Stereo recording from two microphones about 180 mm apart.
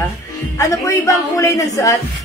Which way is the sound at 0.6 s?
20° left (ahead or behind).